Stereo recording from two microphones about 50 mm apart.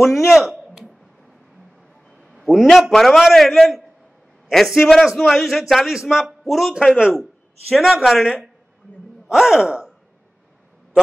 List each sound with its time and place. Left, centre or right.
0.0 s a man's voice: centre
2.1 s a sound: centre
2.7 s a man's voice: centre
7.7 s a man's voice: centre
9.3 s a man's voice: centre